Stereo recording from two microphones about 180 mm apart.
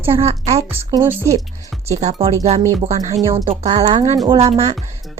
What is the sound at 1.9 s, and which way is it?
Speech, 40° right (ahead or behind).